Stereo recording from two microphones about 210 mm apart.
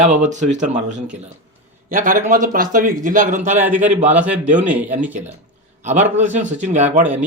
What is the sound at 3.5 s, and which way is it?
A man's voice, 10° right (ahead or behind).